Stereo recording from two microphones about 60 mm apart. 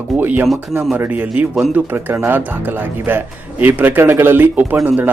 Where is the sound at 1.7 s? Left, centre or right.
Right.